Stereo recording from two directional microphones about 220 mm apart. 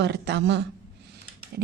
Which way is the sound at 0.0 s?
50° right (ahead or behind).